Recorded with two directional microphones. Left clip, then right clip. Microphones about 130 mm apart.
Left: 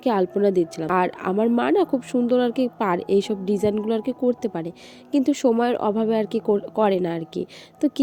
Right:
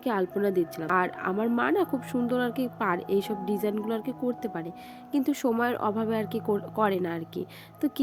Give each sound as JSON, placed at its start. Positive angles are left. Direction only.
{"t": 0.0, "sound": "speech", "side_deg": 35}